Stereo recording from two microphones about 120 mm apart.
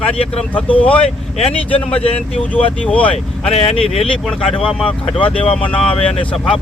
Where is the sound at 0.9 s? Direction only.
55° left (ahead or behind).